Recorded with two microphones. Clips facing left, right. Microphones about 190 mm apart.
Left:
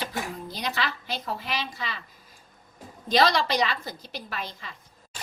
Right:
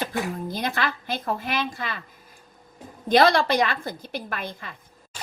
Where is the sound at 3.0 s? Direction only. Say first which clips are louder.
Right 4 dB; 55° right (ahead or behind).